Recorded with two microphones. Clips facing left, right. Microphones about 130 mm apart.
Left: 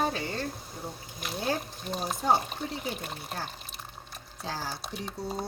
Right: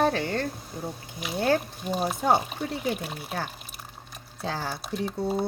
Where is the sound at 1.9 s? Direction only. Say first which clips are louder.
Right 6 dB; 5° right (ahead or behind).